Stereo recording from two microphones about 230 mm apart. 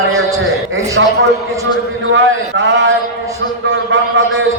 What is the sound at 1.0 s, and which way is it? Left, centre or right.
A man's voice, right.